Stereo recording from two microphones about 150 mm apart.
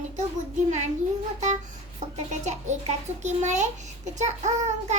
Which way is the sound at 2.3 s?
50° right (ahead or behind).